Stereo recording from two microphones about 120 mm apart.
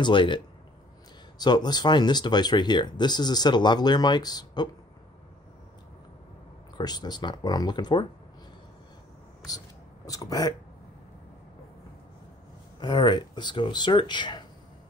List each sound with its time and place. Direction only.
0.0 s speech: 40° left (ahead or behind)
1.4 s speech: 35° left (ahead or behind)
6.8 s speech: 35° left (ahead or behind)
10.0 s speech: 30° left (ahead or behind)
12.8 s speech: 40° left (ahead or behind)